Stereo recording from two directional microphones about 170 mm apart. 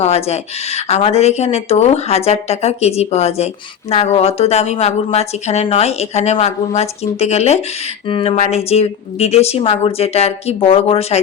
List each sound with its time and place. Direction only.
0.0 s speech: 40° left (ahead or behind)